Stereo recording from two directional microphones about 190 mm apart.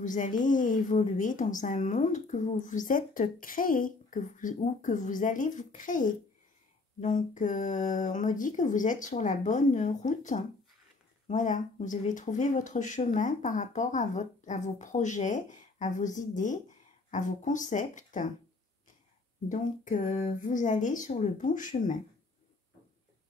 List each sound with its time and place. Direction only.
0.0 s a woman's voice: 45° left (ahead or behind)
19.5 s speech: 40° left (ahead or behind)